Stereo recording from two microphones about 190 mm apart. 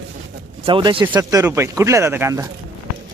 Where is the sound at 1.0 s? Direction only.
15° right (ahead or behind).